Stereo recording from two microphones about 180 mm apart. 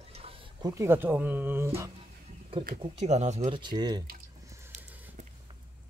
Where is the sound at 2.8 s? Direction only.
40° right (ahead or behind).